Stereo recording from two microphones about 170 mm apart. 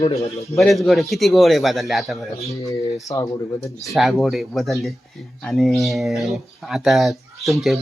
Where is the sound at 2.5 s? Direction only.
20° left (ahead or behind).